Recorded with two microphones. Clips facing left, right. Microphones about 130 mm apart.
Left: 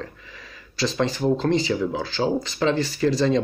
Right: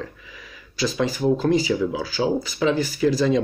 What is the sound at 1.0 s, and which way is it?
Speech, 10° right (ahead or behind).